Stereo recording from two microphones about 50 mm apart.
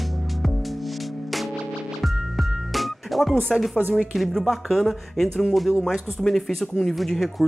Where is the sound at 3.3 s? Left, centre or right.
Centre.